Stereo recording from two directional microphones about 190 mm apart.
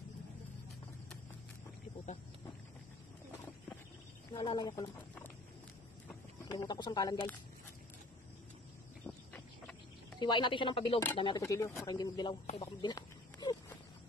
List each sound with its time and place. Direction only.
4.3 s speech: 20° left (ahead or behind)
6.4 s speech: 20° left (ahead or behind)
9.0 s a sound: 10° left (ahead or behind)
10.1 s speech: 25° left (ahead or behind)